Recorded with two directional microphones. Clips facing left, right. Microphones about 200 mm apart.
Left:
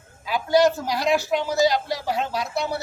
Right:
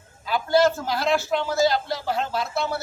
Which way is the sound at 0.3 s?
15° left (ahead or behind).